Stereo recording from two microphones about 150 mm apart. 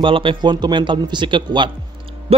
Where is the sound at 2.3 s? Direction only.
40° right (ahead or behind).